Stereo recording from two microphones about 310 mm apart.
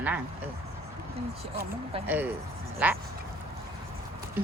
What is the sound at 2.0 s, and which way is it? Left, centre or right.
Speech, centre.